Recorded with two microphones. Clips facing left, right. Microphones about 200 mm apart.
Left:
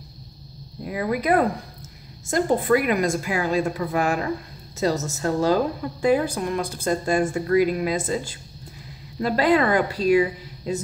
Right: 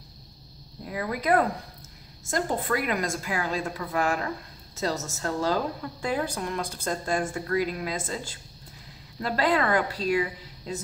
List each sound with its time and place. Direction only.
0.8 s speech: 15° left (ahead or behind)
9.2 s speech: 15° left (ahead or behind)